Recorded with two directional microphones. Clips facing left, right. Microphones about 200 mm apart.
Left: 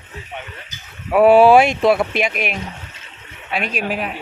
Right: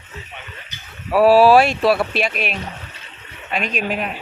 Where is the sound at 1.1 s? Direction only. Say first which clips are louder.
Left 1 dB; 20° left (ahead or behind).